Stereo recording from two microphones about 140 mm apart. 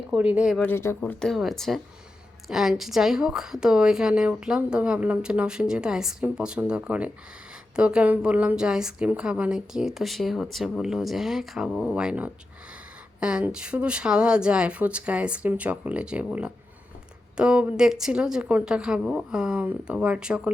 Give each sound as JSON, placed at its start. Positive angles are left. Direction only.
{"t": 0.1, "sound": "speech", "side_deg": -10}
{"t": 0.5, "sound": "speech", "side_deg": 10}
{"t": 0.8, "sound": "speech", "side_deg": 20}
{"t": 1.2, "sound": "a woman's voice", "side_deg": 0}